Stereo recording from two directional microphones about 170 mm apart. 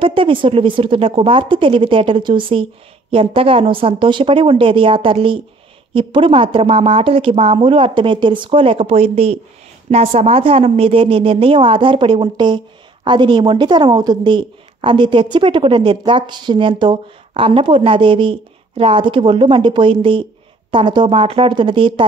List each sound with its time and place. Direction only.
0.0 s a woman's voice: 30° right (ahead or behind)